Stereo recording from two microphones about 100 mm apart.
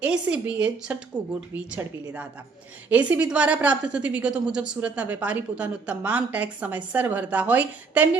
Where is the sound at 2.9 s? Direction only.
15° right (ahead or behind).